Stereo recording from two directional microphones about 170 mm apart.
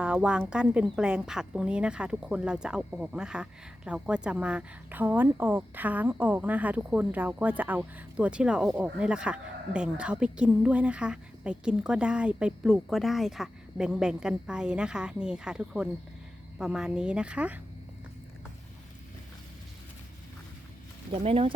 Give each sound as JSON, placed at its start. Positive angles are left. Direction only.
{"t": 0.0, "sound": "speech", "side_deg": -5}
{"t": 21.1, "sound": "speech", "side_deg": -30}